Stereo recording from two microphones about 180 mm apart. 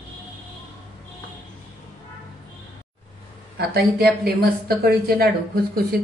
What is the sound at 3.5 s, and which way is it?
A woman's voice, 60° right (ahead or behind).